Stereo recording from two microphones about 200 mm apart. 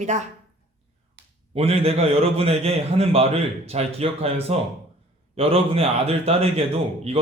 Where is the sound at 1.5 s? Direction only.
30° right (ahead or behind).